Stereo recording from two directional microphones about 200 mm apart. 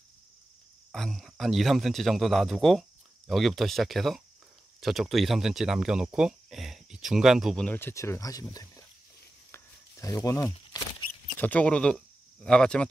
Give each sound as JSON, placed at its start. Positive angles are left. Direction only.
{"t": 0.9, "sound": "speech", "side_deg": 0}
{"t": 9.5, "sound": "a sound", "side_deg": 15}
{"t": 11.3, "sound": "speech", "side_deg": 10}